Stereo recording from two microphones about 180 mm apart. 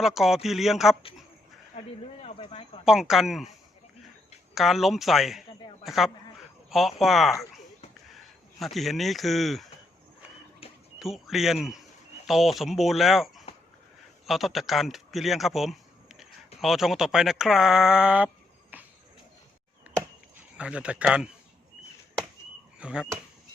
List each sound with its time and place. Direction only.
0.0 s speech: centre (ahead or behind)
2.2 s speech: 35° left (ahead or behind)
2.8 s speech: centre (ahead or behind)
4.5 s speech: centre (ahead or behind)
10.6 s a sound: 30° left (ahead or behind)
11.0 s speech: centre (ahead or behind)
18.7 s a sound: 10° right (ahead or behind)
20.6 s speech: 5° right (ahead or behind)
22.8 s speech: 5° right (ahead or behind)